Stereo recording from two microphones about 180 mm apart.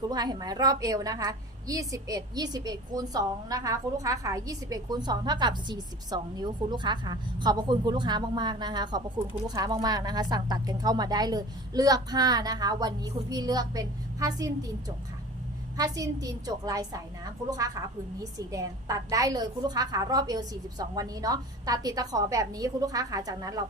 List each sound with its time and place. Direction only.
0.1 s a woman's voice: 20° right (ahead or behind)
18.2 s a woman's voice: 20° right (ahead or behind)